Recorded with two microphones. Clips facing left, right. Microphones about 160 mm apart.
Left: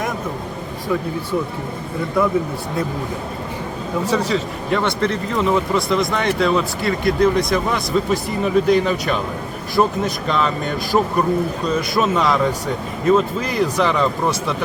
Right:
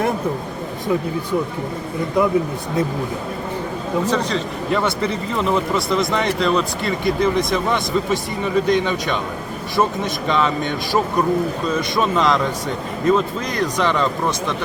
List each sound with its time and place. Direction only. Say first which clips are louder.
2.2 s speech: right 1 dB; 20° right (ahead or behind)
4.0 s speech: left 4 dB; 10° left (ahead or behind)
4.8 s a man's voice: left 1 dB; 5° right (ahead or behind)